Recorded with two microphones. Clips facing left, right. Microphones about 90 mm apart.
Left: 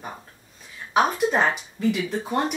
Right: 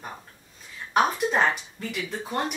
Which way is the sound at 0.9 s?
Centre (ahead or behind).